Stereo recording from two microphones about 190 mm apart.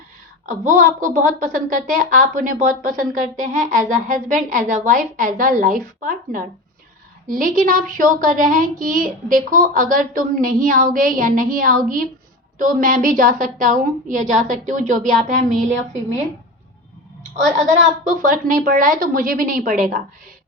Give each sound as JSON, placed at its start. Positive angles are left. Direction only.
{"t": 0.4, "sound": "a woman's voice", "side_deg": -45}
{"t": 17.7, "sound": "a woman's voice", "side_deg": -45}